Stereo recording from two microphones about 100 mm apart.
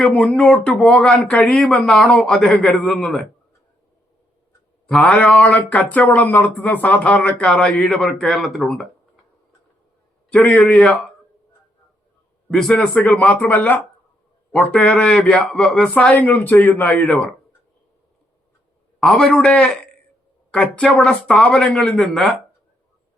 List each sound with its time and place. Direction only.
0.0 s a man's voice: 15° left (ahead or behind)
4.9 s a man's voice: 15° left (ahead or behind)
10.2 s a man's voice: 10° left (ahead or behind)
12.5 s a man's voice: 5° left (ahead or behind)
18.9 s a man's voice: 5° left (ahead or behind)